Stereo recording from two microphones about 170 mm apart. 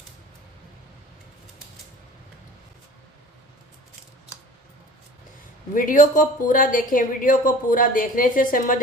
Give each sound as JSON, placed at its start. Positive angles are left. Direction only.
{"t": 5.8, "sound": "speech", "side_deg": 50}